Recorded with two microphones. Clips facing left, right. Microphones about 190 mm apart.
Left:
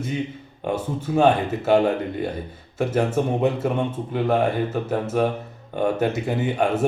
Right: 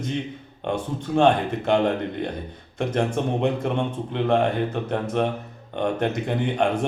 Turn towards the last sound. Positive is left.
turn(degrees=5)  # may be behind; listen again after turning